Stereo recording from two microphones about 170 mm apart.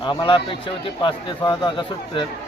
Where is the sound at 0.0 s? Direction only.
30° left (ahead or behind).